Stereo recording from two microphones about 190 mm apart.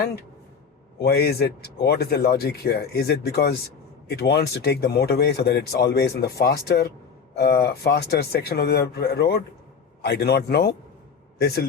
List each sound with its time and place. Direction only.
0.9 s a man's voice: 55° left (ahead or behind)